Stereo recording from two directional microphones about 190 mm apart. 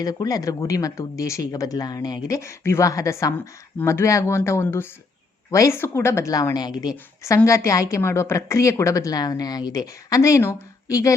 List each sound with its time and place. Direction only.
0.0 s speech: 20° left (ahead or behind)